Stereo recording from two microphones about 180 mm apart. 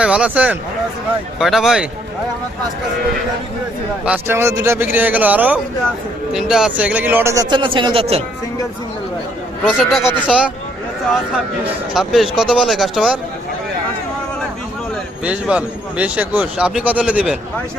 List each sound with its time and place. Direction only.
0.0 s speech: 5° right (ahead or behind)
4.0 s speech: 5° right (ahead or behind)
4.4 s speech: 15° right (ahead or behind)
7.5 s speech: 25° right (ahead or behind)
9.6 s speech: centre (ahead or behind)
11.6 s speech: centre (ahead or behind)
15.2 s speech: 5° right (ahead or behind)